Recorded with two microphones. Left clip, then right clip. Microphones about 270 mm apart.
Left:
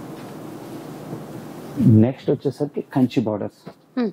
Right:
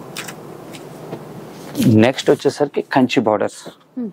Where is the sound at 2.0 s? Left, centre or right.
Centre.